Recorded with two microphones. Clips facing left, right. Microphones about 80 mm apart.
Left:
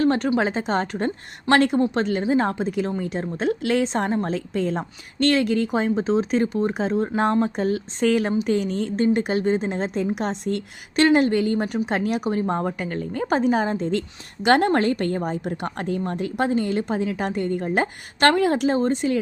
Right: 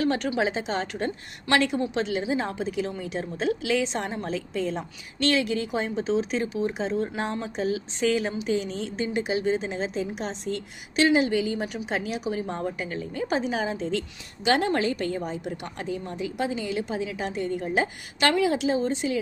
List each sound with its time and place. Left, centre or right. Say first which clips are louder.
0.0 s a woman's voice: left 5 dB; left